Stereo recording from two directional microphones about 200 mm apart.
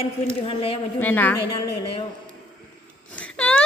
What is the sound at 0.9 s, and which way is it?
Speech, 10° left (ahead or behind).